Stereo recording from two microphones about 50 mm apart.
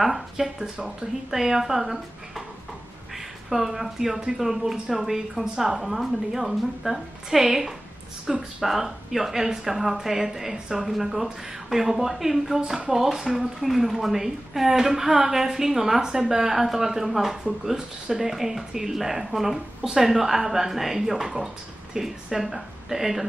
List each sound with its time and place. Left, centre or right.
0.0 s speech: centre
3.4 s speech: centre
8.6 s speech: centre